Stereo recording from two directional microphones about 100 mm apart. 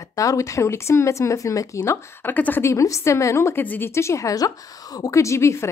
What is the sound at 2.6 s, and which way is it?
A woman's voice, 30° left (ahead or behind).